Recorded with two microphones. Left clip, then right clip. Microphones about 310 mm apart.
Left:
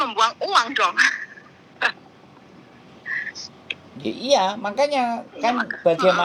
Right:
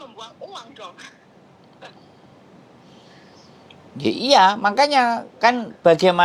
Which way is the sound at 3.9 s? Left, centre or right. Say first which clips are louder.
Right 5 dB; right.